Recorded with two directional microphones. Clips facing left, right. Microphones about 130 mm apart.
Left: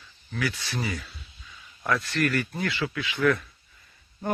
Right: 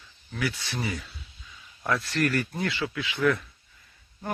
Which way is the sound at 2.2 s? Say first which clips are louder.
Right 2 dB; 30° right (ahead or behind).